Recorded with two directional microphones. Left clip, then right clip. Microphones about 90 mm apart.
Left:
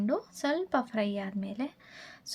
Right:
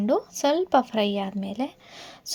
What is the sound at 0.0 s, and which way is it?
A woman's voice, 50° right (ahead or behind).